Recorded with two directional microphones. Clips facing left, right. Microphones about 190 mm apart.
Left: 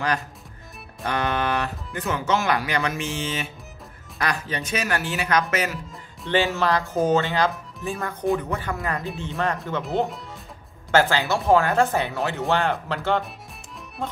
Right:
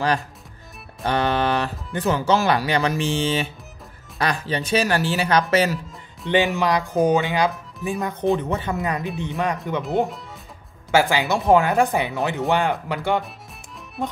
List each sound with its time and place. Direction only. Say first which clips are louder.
1.0 s speech: right 4 dB; 30° right (ahead or behind)
6.2 s speech: right 2 dB; 15° right (ahead or behind)
10.0 s speech: even; centre (ahead or behind)
10.9 s speech: right 1 dB; 10° right (ahead or behind)